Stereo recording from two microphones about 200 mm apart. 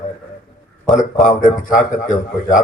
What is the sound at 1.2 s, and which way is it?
Speech, 40° left (ahead or behind).